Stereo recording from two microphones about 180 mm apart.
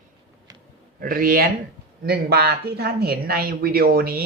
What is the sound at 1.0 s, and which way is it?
Speech, 50° right (ahead or behind).